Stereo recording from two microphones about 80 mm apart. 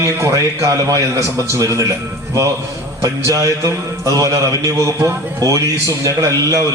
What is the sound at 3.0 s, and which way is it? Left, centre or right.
A man's voice, right.